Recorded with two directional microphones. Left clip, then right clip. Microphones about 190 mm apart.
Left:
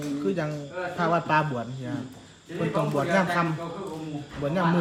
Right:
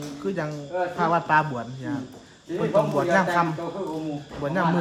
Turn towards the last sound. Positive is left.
turn(degrees=-5)  # may be behind; listen again after turning